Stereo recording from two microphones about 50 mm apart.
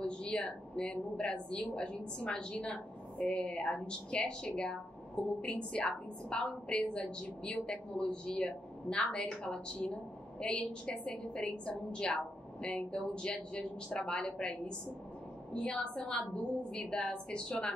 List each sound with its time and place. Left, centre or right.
0.0 s a woman's voice: centre